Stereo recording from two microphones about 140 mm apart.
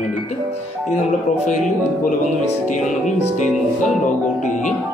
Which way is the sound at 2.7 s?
60° left (ahead or behind).